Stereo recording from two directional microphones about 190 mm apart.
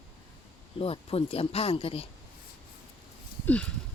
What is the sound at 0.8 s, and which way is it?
Speech, 30° left (ahead or behind).